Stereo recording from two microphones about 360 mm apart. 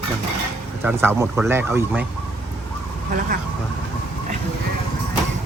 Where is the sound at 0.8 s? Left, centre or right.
Centre.